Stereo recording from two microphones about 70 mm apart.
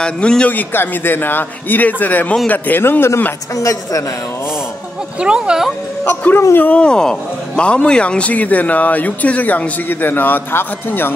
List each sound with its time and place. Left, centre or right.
0.0 s speech: centre
0.5 s speech: left
3.5 s a woman's voice: left
5.2 s speech: centre
6.0 s speech: left